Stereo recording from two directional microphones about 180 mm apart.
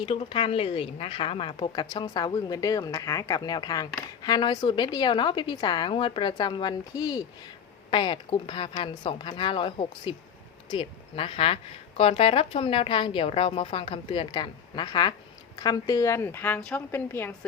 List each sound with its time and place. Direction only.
0.0 s a woman's voice: 30° left (ahead or behind); by 17.3 s 10° left (ahead or behind)